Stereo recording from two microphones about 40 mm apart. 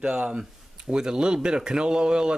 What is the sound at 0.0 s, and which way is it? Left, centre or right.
Speech, right.